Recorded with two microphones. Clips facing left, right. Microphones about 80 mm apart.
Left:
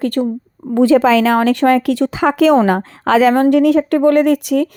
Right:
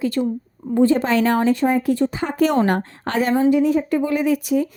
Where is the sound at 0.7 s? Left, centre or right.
Left.